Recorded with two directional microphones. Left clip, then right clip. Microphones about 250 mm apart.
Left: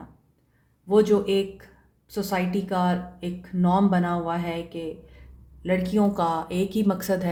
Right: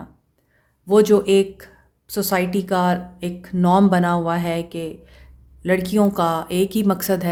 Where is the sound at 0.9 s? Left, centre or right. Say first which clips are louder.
Right 6 dB; right.